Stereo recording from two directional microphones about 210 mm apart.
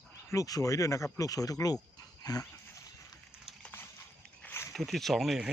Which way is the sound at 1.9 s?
20° left (ahead or behind).